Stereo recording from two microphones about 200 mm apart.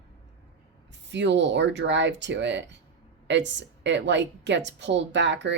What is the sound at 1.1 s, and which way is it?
A woman's voice, 60° right (ahead or behind).